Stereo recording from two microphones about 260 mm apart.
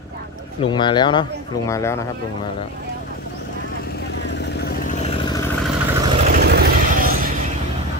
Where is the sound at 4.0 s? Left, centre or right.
Left; by 5.5 s centre.